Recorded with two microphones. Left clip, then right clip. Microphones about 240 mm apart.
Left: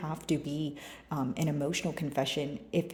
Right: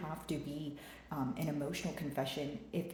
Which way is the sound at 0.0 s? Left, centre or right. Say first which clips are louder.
Left 8 dB; left.